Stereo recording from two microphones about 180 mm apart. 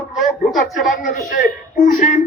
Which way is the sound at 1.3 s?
45° left (ahead or behind).